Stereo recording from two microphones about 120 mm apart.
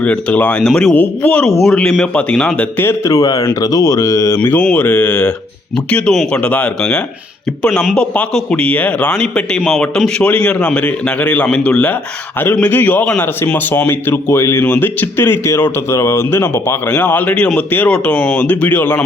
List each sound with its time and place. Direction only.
0.0 s a man's voice: 10° left (ahead or behind)
1.5 s speech: centre (ahead or behind); by 4.4 s 25° left (ahead or behind)
4.4 s a man's voice: 10° left (ahead or behind)